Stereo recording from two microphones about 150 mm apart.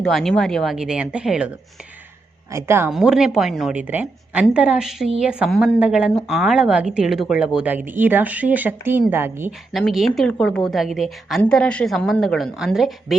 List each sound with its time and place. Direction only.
0.0 s a woman's voice: centre (ahead or behind)
2.5 s speech: 15° right (ahead or behind)
2.9 s a woman's voice: 5° right (ahead or behind)
9.5 s a woman's voice: centre (ahead or behind)